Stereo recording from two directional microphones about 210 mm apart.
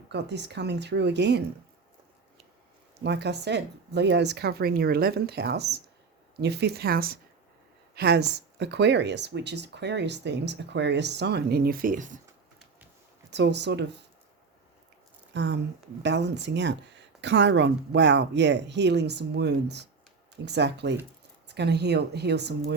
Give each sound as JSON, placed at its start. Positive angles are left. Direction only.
{"t": 0.1, "sound": "speech", "side_deg": -55}
{"t": 3.0, "sound": "speech", "side_deg": -55}
{"t": 13.3, "sound": "speech", "side_deg": -55}
{"t": 15.3, "sound": "speech", "side_deg": -55}